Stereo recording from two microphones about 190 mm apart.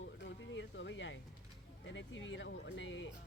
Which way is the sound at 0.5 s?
75° left (ahead or behind).